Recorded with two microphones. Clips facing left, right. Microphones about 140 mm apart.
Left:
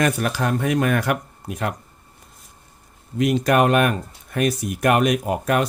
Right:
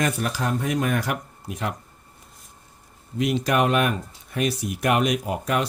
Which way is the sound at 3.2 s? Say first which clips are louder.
Left 4 dB; 50° left (ahead or behind).